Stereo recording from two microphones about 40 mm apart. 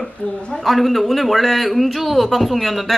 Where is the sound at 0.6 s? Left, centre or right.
Centre.